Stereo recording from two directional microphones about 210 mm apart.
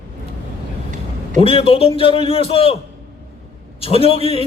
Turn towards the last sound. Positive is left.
turn(degrees=25)  # may be behind; listen again after turning